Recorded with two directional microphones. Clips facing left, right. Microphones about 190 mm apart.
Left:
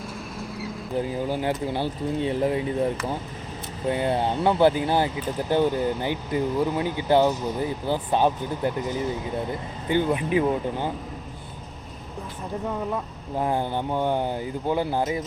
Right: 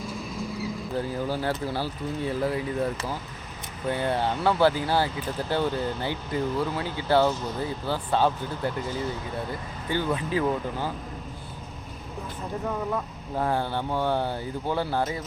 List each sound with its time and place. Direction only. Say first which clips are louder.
0.9 s speech: left 3 dB; 15° left (ahead or behind)
12.9 s speech: left 1 dB; 15° left (ahead or behind)